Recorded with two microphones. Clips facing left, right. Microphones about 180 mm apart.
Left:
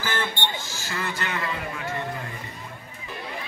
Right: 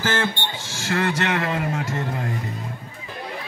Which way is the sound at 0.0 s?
90° right.